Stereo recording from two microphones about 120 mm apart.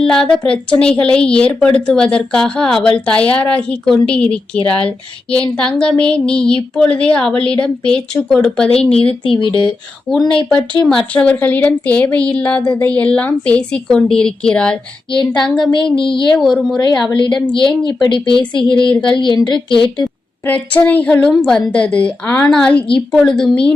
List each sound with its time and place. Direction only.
0.0 s a woman's voice: 5° left (ahead or behind)
9.2 s a woman's voice: 45° left (ahead or behind)
10.8 s a woman's voice: 5° left (ahead or behind)
15.7 s a woman's voice: 40° left (ahead or behind)
20.4 s a woman's voice: 15° left (ahead or behind)